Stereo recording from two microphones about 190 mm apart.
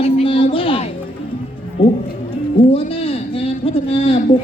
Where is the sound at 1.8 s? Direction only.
25° left (ahead or behind).